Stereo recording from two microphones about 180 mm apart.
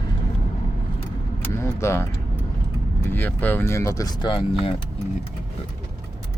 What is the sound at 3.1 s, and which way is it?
Speech, 10° left (ahead or behind).